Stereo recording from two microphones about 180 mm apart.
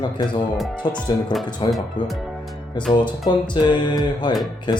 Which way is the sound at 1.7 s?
Centre (ahead or behind).